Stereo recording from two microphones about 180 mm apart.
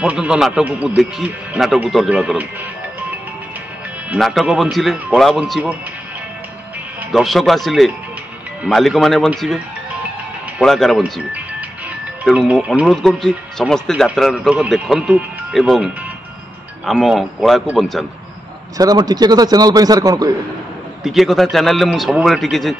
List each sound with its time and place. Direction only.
0.0 s speech: 5° right (ahead or behind)
4.1 s speech: centre (ahead or behind)
7.1 s speech: centre (ahead or behind)
10.6 s speech: centre (ahead or behind)
18.8 s a man's voice: 20° right (ahead or behind)
21.0 s speech: centre (ahead or behind)